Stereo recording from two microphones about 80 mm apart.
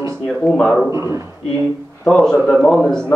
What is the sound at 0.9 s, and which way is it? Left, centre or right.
Speech, right.